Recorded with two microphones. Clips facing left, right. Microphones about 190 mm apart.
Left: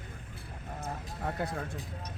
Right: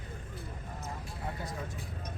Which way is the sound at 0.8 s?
60° left (ahead or behind).